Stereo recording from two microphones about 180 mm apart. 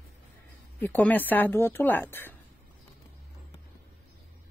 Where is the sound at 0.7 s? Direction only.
10° left (ahead or behind).